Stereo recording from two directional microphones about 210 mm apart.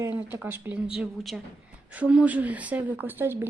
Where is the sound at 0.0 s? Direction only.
10° right (ahead or behind).